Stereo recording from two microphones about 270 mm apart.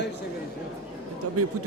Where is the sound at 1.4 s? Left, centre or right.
Right.